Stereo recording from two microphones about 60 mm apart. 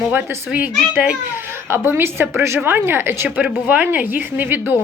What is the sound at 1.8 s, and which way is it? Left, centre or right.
A woman's voice, right.